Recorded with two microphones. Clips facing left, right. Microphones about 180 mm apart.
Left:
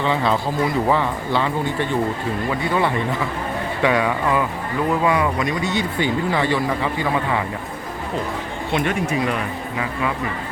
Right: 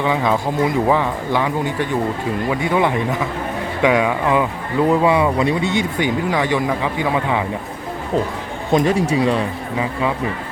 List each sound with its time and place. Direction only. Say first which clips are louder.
0.0 s speech: right 2 dB; 15° right (ahead or behind); by 5.7 s 30° right (ahead or behind)
6.0 s speech: even; 15° right (ahead or behind)
8.7 s speech: right 6 dB; 35° right (ahead or behind)